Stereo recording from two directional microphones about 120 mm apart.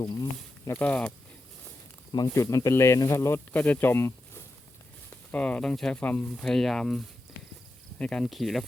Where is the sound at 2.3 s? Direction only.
25° left (ahead or behind).